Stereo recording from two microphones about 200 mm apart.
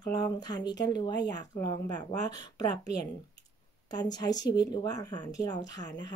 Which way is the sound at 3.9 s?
20° left (ahead or behind).